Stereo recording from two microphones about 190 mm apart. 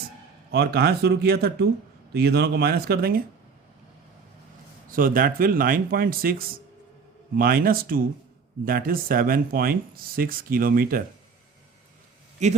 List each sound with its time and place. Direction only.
0.5 s speech: 55° right (ahead or behind)
4.9 s speech: 45° right (ahead or behind)
7.3 s speech: 50° right (ahead or behind)
12.4 s a man's voice: 40° right (ahead or behind)